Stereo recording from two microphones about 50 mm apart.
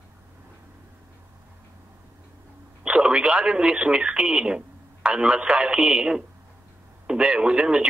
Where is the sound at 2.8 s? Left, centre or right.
Right.